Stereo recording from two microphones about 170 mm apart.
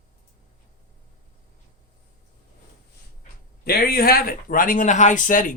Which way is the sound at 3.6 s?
60° left (ahead or behind).